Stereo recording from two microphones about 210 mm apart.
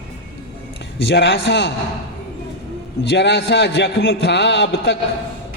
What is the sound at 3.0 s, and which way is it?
A man's voice, 50° left (ahead or behind).